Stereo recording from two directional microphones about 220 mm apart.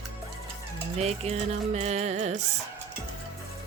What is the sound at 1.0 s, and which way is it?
Music, 30° right (ahead or behind).